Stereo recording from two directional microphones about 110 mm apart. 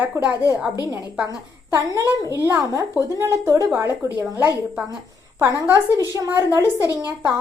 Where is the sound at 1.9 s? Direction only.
25° right (ahead or behind).